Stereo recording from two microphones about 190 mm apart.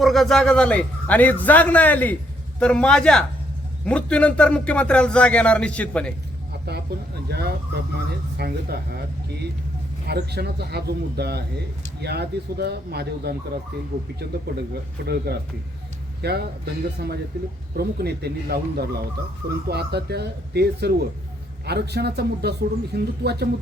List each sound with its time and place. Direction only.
0.0 s a man's voice: centre (ahead or behind)
7.3 s speech: 60° right (ahead or behind)
15.0 s speech: 55° right (ahead or behind)